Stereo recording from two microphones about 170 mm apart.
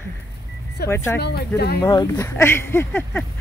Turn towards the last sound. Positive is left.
turn(degrees=10)  # may be behind; listen again after turning